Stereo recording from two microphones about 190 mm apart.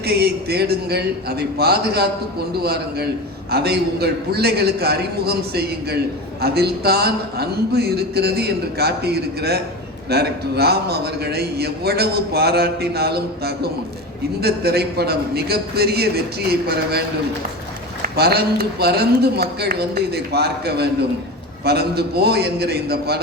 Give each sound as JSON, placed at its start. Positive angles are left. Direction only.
{"t": 0.0, "sound": "a man's voice", "side_deg": -55}
{"t": 18.0, "sound": "a man's voice", "side_deg": -55}